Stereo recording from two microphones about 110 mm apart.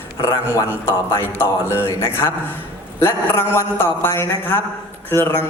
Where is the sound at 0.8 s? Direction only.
20° left (ahead or behind).